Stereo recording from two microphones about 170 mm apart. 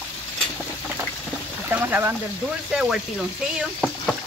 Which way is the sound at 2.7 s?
5° right (ahead or behind).